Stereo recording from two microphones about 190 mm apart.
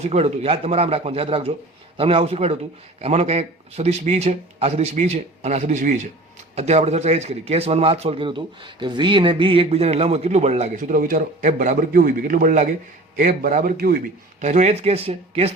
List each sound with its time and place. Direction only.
0.0 s a man's voice: 35° right (ahead or behind); by 14.0 s 50° right (ahead or behind)
14.4 s a man's voice: 35° right (ahead or behind)